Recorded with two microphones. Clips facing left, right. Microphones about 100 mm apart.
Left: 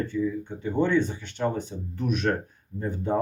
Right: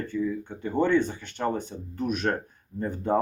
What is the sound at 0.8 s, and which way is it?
Speech, 50° right (ahead or behind).